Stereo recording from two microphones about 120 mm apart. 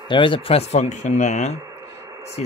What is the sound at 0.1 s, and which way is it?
Speech, 45° left (ahead or behind).